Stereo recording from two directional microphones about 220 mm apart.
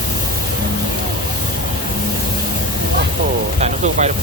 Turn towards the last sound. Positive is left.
turn(degrees=-30)  # may be behind; listen again after turning